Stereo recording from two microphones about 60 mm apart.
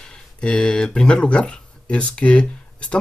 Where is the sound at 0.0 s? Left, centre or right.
Centre.